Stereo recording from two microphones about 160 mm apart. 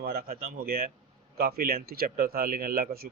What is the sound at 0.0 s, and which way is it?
Speech, 70° right (ahead or behind).